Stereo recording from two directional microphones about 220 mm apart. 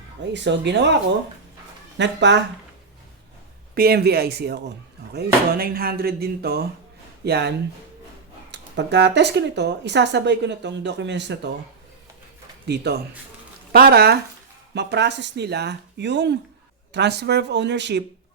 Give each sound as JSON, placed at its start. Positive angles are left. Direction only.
{"t": 0.3, "sound": "speech", "side_deg": -50}
{"t": 2.0, "sound": "speech", "side_deg": -50}
{"t": 3.8, "sound": "speech", "side_deg": -45}
{"t": 12.6, "sound": "speech", "side_deg": -50}